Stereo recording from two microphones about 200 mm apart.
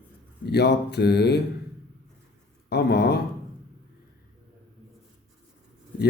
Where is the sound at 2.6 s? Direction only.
55° left (ahead or behind).